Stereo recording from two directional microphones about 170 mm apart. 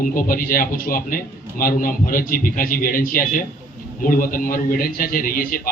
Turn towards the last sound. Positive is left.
turn(degrees=55)  # may be behind; listen again after turning